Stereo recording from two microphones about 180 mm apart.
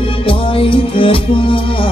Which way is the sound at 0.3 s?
30° left (ahead or behind).